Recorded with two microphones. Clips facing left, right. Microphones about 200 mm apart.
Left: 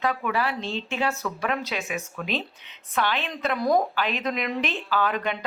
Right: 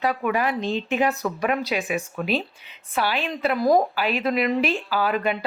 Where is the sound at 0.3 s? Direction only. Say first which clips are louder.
Right 4 dB; 15° right (ahead or behind).